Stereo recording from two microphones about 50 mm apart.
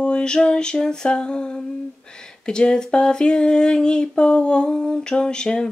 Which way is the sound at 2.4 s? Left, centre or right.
Centre.